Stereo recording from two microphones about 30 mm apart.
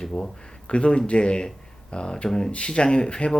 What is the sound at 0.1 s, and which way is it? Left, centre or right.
Speech, left.